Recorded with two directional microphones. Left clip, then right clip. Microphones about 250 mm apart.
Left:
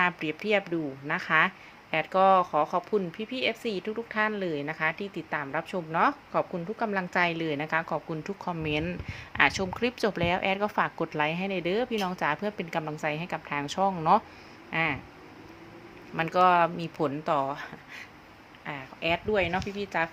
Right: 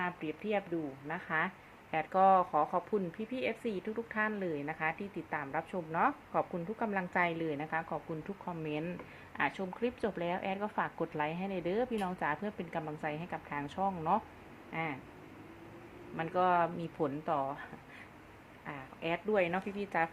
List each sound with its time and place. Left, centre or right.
0.0 s speech: left
16.1 s a woman's voice: left; by 20.1 s centre